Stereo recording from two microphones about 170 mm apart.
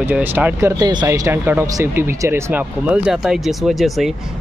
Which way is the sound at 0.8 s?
25° right (ahead or behind).